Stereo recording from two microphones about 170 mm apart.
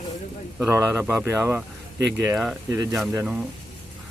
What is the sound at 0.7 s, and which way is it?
Speech, 15° right (ahead or behind).